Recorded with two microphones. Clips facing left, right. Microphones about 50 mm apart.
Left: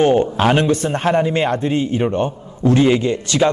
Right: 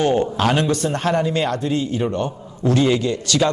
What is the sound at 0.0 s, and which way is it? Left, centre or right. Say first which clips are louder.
A man's voice: left 4 dB; left.